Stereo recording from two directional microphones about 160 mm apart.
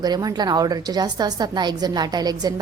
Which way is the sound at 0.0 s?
25° right (ahead or behind).